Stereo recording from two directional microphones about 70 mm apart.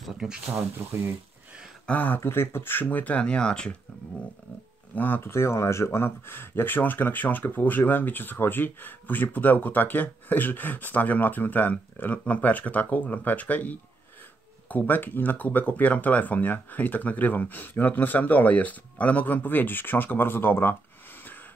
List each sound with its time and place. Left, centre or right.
0.0 s speech: centre
0.7 s speech: right
1.9 s speech: left
2.1 s speech: left; by 3.7 s centre
4.9 s speech: left